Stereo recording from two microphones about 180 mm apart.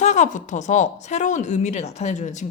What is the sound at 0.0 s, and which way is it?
A woman's voice, 40° left (ahead or behind).